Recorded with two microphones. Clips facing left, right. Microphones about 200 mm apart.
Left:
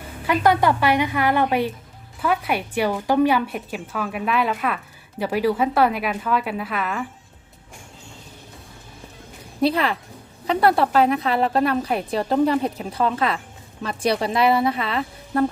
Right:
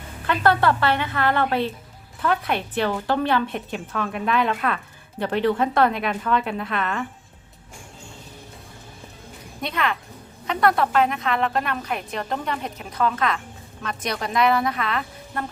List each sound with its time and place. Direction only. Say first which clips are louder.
0.3 s a woman's voice: left 2 dB; 15° left (ahead or behind)
9.6 s a woman's voice: left 6 dB; 35° left (ahead or behind)